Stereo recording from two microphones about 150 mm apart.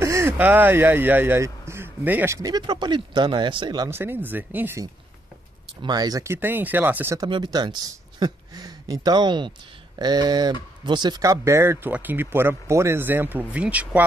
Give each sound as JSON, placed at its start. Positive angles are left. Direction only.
{"t": 0.0, "sound": "speech", "side_deg": -15}
{"t": 3.9, "sound": "speech", "side_deg": -15}
{"t": 5.8, "sound": "speech", "side_deg": -25}
{"t": 7.2, "sound": "speech", "side_deg": -30}